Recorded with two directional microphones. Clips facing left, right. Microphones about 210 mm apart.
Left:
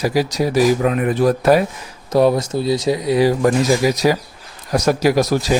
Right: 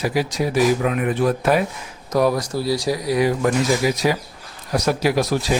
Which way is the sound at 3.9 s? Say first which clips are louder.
Left 4 dB; 40° left (ahead or behind).